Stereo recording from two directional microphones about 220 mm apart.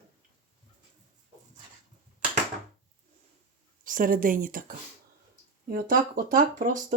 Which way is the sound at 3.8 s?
40° right (ahead or behind).